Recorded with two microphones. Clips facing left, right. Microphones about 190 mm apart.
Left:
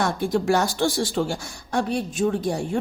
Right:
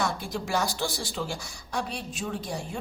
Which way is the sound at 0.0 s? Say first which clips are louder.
Left 8 dB; 50° left (ahead or behind).